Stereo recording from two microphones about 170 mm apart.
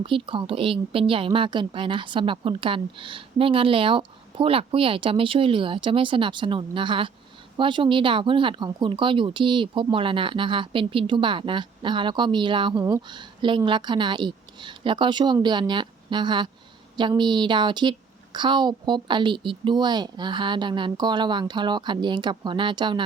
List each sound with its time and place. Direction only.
0.0 s a woman's voice: 30° right (ahead or behind)